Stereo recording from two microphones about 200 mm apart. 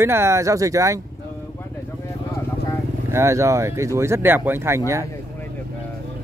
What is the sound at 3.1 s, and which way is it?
Speech, 15° right (ahead or behind).